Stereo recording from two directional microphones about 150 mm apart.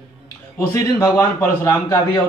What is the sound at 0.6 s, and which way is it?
Speech, 20° left (ahead or behind).